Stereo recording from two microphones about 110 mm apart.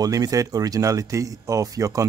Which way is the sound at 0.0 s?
35° right (ahead or behind).